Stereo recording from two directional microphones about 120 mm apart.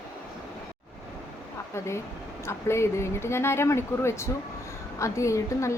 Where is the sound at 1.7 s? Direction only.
25° left (ahead or behind).